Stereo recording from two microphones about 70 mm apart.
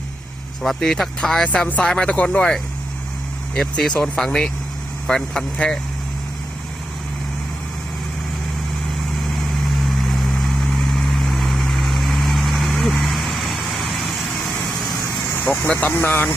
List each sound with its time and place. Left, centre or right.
0.6 s speech: centre
9.8 s vehicle: centre
15.6 s speech: left